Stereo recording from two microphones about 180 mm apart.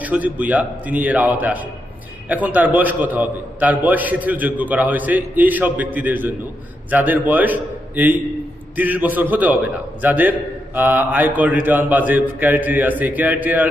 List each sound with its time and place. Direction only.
0.0 s a man's voice: 10° right (ahead or behind)